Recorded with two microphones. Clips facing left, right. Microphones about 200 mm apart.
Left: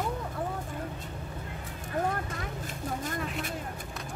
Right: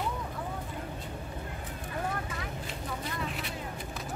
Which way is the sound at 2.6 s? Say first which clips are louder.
Left 3 dB; 45° left (ahead or behind).